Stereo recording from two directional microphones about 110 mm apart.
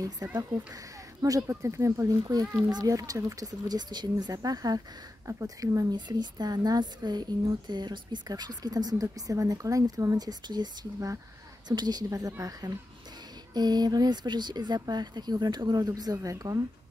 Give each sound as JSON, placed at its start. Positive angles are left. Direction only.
{"t": 0.0, "sound": "speech", "side_deg": -30}